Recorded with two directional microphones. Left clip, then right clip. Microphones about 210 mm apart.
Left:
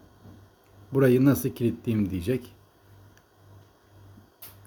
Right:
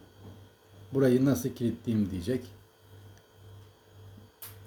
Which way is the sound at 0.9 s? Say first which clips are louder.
Left 4 dB; 40° left (ahead or behind).